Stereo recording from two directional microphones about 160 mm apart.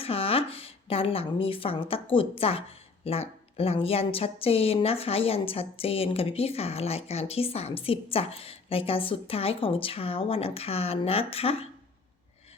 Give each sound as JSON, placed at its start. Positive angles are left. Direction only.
{"t": 0.0, "sound": "speech", "side_deg": 35}